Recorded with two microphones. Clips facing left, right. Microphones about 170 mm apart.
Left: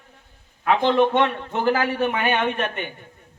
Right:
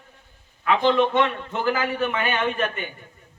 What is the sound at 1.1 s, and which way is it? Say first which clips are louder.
Speech: left 1 dB; 50° left (ahead or behind).